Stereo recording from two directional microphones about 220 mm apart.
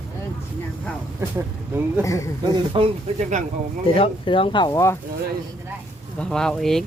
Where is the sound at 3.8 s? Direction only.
25° left (ahead or behind).